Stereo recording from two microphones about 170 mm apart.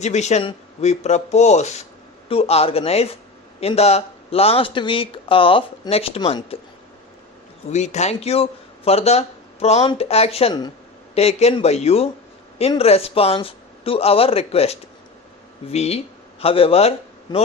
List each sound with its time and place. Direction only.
0.0 s a man's voice: 40° left (ahead or behind)
7.7 s speech: 40° left (ahead or behind)